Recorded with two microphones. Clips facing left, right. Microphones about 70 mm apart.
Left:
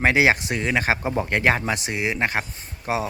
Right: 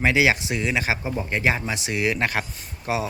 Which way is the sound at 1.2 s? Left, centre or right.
Left.